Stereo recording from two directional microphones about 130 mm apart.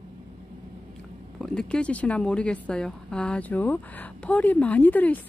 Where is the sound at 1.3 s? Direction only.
5° left (ahead or behind).